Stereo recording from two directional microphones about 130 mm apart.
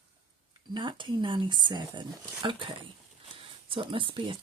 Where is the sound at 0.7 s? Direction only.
35° right (ahead or behind).